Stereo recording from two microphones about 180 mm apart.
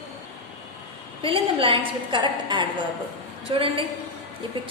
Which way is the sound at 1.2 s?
30° right (ahead or behind).